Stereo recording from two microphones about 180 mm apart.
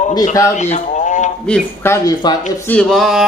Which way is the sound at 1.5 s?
10° left (ahead or behind).